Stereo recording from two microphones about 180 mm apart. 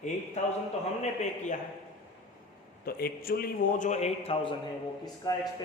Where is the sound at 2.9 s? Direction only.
55° left (ahead or behind).